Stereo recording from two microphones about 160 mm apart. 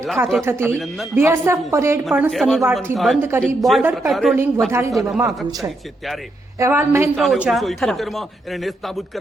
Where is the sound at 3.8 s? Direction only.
10° right (ahead or behind).